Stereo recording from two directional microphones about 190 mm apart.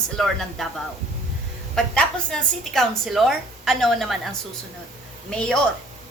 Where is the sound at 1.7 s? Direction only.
5° left (ahead or behind).